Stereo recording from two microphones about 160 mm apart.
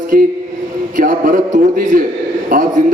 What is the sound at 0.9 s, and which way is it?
A man's voice, 60° right (ahead or behind).